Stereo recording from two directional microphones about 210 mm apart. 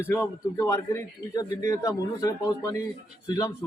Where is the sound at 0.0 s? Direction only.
10° left (ahead or behind).